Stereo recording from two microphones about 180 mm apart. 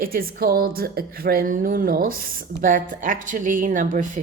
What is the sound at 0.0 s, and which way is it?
Speech, 55° right (ahead or behind).